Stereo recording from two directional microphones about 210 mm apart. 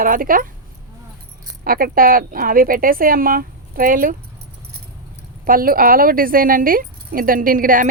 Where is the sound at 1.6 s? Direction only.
45° right (ahead or behind).